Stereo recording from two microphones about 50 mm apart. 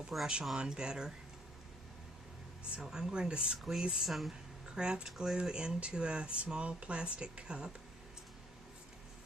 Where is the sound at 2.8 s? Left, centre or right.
Centre.